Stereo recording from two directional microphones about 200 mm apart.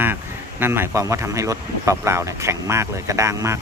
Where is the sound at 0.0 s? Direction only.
10° right (ahead or behind).